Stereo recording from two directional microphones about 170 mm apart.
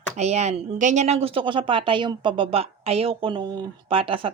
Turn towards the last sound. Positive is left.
turn(degrees=-30)  # may be behind; listen again after turning